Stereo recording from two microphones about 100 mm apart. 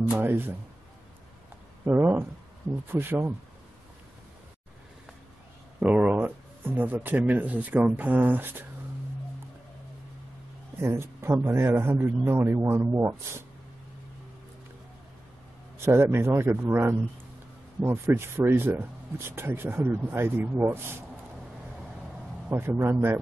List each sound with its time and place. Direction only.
0.2 s speech: 20° right (ahead or behind)
1.9 s speech: 20° right (ahead or behind)
5.8 s a sound: 15° right (ahead or behind)
6.8 s speech: 20° right (ahead or behind)
10.8 s speech: 25° right (ahead or behind)
15.8 s speech: 25° right (ahead or behind)
22.5 s speech: 20° right (ahead or behind)